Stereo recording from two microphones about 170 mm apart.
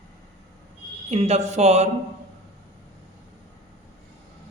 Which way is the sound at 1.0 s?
40° right (ahead or behind).